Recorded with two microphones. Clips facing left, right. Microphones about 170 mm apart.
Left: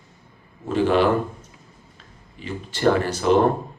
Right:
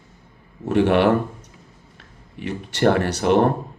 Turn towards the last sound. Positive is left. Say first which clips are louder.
# right 1 dB
turn(degrees=-65)  # may be behind; listen again after turning